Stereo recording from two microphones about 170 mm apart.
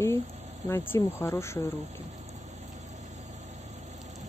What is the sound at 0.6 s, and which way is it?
Speech, 15° left (ahead or behind).